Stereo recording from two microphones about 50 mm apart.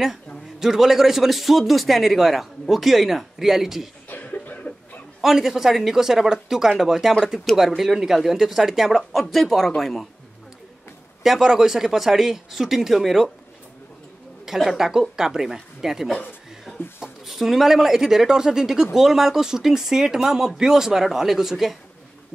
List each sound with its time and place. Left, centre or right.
0.6 s a man's voice: centre
4.1 s cough: left
5.2 s a man's voice: centre
11.2 s speech: centre
14.4 s a woman's voice: centre
17.3 s speech: centre